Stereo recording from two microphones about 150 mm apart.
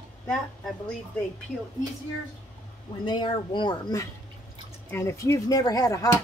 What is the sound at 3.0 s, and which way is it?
Speech, 30° left (ahead or behind).